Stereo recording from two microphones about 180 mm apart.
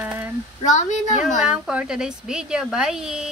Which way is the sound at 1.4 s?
5° right (ahead or behind).